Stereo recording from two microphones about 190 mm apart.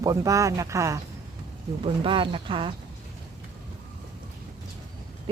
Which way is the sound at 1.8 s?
25° right (ahead or behind).